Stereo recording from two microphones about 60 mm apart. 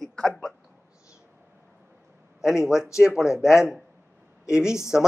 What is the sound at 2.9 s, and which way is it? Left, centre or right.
Speech, centre.